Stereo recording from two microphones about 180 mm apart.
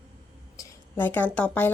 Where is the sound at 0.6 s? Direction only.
10° left (ahead or behind).